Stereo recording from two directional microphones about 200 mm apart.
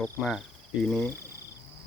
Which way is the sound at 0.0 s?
Centre (ahead or behind).